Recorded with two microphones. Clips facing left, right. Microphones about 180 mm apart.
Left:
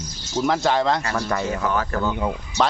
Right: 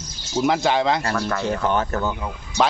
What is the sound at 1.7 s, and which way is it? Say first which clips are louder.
Speech: right 1 dB; 25° right (ahead or behind).